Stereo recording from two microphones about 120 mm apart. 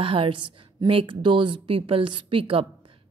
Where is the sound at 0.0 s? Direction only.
50° right (ahead or behind).